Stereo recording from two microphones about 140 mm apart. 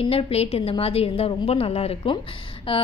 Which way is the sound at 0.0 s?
40° left (ahead or behind).